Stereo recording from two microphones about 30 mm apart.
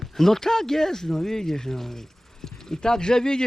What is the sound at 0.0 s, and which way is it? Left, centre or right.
Speech, centre.